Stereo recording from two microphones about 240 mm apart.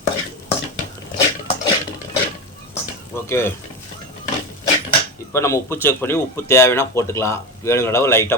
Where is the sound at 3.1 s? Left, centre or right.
Centre.